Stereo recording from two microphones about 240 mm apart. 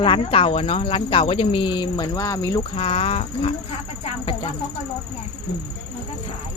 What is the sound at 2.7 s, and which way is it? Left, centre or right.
Speech, left.